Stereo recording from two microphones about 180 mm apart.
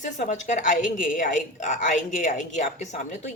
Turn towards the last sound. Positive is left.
turn(degrees=40)  # may be behind; listen again after turning